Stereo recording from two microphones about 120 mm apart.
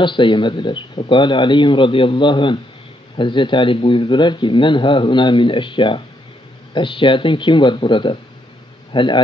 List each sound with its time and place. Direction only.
0.0 s speech: 40° left (ahead or behind)